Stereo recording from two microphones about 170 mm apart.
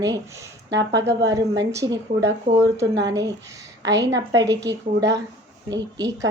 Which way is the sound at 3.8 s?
90° right.